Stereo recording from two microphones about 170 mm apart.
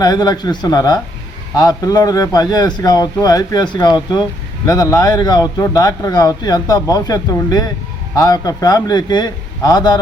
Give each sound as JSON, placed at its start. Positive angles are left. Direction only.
{"t": 0.0, "sound": "a man's voice", "side_deg": 25}